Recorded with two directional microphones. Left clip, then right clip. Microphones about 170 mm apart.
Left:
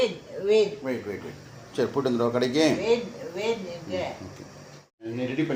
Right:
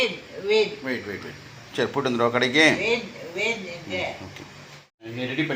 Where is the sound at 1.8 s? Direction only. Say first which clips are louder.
Right 2 dB; 20° right (ahead or behind).